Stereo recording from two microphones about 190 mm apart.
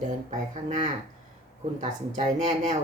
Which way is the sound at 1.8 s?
40° right (ahead or behind).